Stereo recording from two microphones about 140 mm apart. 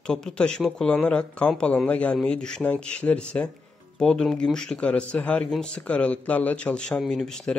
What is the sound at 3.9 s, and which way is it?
Speech, 5° left (ahead or behind).